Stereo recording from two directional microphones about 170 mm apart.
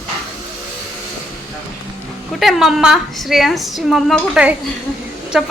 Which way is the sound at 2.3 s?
Centre (ahead or behind).